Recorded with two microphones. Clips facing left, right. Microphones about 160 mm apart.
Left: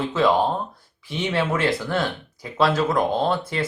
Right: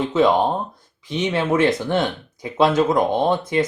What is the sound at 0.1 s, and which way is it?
Speech, 20° right (ahead or behind).